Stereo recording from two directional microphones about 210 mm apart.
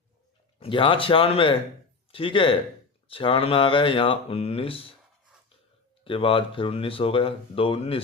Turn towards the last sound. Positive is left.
turn(degrees=25)  # may be behind; listen again after turning